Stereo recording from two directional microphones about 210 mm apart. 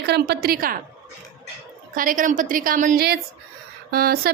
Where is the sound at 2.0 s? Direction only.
40° right (ahead or behind).